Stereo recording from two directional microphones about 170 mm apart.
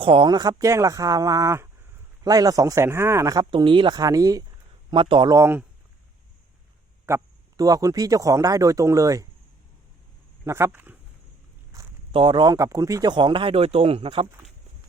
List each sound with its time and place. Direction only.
0.0 s speech: 30° right (ahead or behind)
7.0 s speech: 20° right (ahead or behind)
10.4 s speech: 15° right (ahead or behind)
11.7 s walk: 20° right (ahead or behind)
12.1 s speech: 30° right (ahead or behind)